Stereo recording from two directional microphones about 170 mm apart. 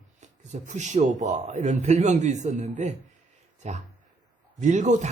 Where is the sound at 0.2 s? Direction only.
45° right (ahead or behind).